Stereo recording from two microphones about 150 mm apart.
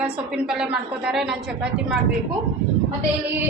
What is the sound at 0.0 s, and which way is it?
A woman's voice, 5° right (ahead or behind).